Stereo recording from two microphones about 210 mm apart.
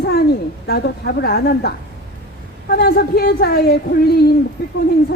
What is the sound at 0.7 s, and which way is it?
Speech, 50° left (ahead or behind).